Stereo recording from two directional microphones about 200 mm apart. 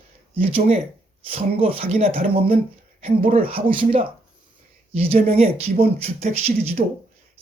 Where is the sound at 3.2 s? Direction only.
45° right (ahead or behind).